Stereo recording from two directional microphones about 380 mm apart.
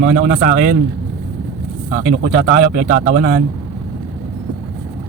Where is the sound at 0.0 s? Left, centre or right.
Right.